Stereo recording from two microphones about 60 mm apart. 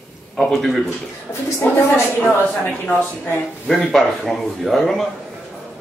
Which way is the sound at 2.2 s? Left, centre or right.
Left.